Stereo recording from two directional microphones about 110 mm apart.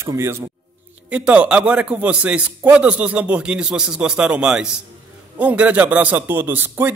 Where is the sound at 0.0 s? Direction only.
25° right (ahead or behind).